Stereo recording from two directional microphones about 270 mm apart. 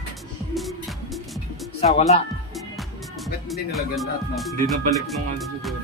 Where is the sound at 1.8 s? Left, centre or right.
Left.